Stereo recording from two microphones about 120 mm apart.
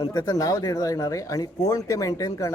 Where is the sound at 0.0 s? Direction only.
30° left (ahead or behind).